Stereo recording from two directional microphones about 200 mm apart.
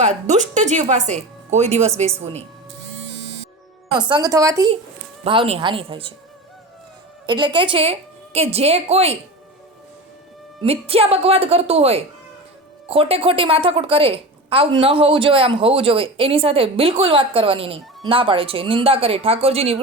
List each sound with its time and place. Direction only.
0.0 s a woman's voice: 35° right (ahead or behind)
3.9 s a woman's voice: 20° right (ahead or behind)
5.2 s a woman's voice: 25° right (ahead or behind)
7.3 s a woman's voice: 20° right (ahead or behind)
10.6 s a woman's voice: 30° right (ahead or behind)